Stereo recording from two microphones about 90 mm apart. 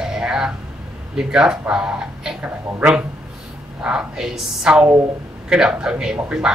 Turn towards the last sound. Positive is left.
turn(degrees=-10)  # may be behind; listen again after turning